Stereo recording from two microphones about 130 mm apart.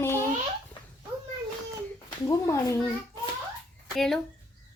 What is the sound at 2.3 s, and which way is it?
Speech, 20° left (ahead or behind).